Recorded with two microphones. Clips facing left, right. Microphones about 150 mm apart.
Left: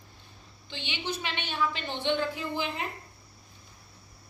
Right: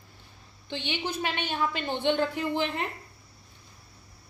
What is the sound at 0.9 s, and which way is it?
A woman's voice, 50° right (ahead or behind).